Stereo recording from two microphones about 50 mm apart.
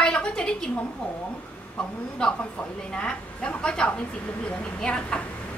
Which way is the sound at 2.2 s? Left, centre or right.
Centre.